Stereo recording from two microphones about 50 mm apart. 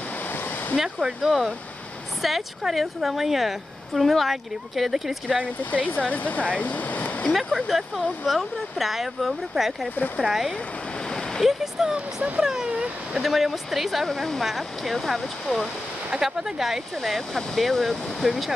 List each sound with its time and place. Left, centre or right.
0.3 s waterfall: left
0.7 s a woman's voice: centre
5.7 s speech: left
7.3 s a woman's voice: centre
11.1 s waves: centre
11.4 s speech: centre
13.1 s a woman's voice: centre